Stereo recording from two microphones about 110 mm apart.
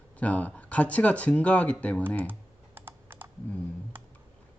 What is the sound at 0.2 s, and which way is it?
Speech, 15° left (ahead or behind).